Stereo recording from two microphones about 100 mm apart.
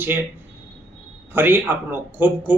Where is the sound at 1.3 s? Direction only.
20° right (ahead or behind).